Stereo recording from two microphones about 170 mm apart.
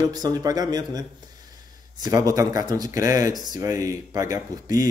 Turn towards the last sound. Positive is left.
turn(degrees=-20)  # may be behind; listen again after turning